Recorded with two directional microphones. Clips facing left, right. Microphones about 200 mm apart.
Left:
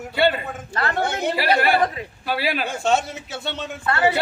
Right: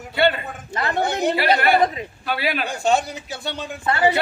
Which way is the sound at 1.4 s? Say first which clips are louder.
Right 1 dB; 10° left (ahead or behind).